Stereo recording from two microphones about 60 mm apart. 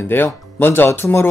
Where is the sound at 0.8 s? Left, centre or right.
Left.